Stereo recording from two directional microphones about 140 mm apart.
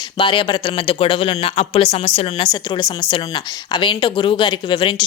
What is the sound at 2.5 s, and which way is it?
Speech, 30° left (ahead or behind).